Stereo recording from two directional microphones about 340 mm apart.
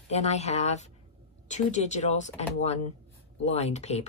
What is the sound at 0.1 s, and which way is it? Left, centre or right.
Speech, centre.